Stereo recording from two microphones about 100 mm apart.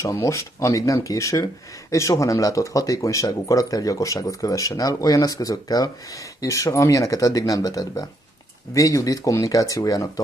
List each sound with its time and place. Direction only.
0.0 s speech: 30° left (ahead or behind)